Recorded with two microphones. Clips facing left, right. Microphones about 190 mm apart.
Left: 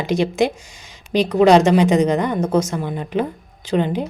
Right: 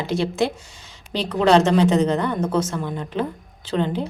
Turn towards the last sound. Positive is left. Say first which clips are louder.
# left 3 dB
turn(degrees=15)  # may be behind; listen again after turning